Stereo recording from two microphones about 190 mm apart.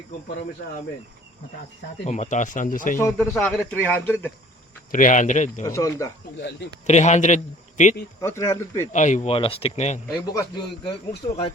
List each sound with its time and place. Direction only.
2.0 s speech: 40° left (ahead or behind)
3.3 s speech: centre (ahead or behind)
4.9 s a man's voice: 40° left (ahead or behind)
5.6 s speech: 15° left (ahead or behind)
6.3 s speech: 65° left (ahead or behind)
6.8 s a man's voice: 35° left (ahead or behind)
8.2 s speech: 15° left (ahead or behind)
8.9 s a man's voice: 40° left (ahead or behind)
10.1 s a man's voice: 20° left (ahead or behind)
11.3 s a man's voice: 30° left (ahead or behind)